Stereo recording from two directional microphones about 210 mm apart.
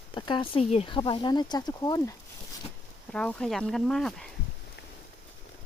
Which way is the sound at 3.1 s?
5° left (ahead or behind).